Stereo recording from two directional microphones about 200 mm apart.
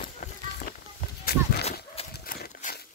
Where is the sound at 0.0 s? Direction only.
45° left (ahead or behind).